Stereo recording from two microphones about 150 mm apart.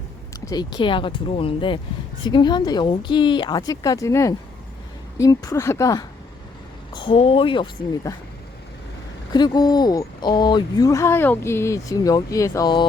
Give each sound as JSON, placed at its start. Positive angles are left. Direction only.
{"t": 0.4, "sound": "speech", "side_deg": 30}
{"t": 6.9, "sound": "speech", "side_deg": 35}
{"t": 8.1, "sound": "speech", "side_deg": 20}
{"t": 9.3, "sound": "speech", "side_deg": 25}